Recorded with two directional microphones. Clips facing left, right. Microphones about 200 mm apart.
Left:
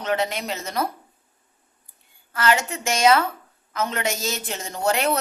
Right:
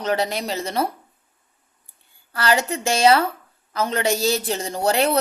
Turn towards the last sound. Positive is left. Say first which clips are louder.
# right 3 dB
turn(degrees=-35)  # may be behind; listen again after turning